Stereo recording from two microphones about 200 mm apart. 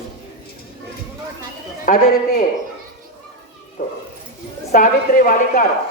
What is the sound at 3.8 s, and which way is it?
A woman's voice, 45° left (ahead or behind).